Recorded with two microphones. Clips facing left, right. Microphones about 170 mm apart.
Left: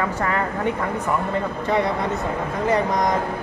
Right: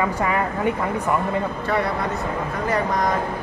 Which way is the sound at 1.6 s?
20° left (ahead or behind).